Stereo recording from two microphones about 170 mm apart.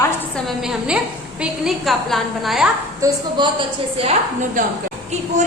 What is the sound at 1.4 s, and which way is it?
A woman's voice, centre (ahead or behind).